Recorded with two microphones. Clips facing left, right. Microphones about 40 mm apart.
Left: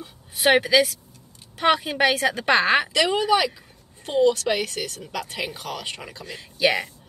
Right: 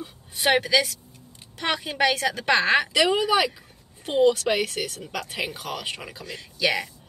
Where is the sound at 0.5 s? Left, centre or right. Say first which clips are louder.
Left 3 dB; centre.